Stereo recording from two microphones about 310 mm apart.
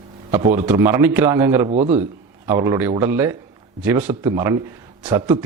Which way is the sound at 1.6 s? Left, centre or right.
Right.